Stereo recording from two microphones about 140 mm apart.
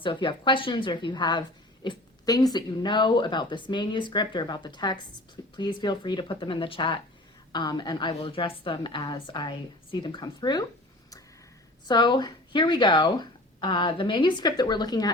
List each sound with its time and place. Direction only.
0.0 s a woman's voice: 35° left (ahead or behind)
11.9 s a woman's voice: 30° left (ahead or behind)